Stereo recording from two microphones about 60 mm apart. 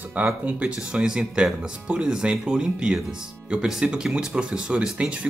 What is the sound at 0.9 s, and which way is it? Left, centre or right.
Speech, centre.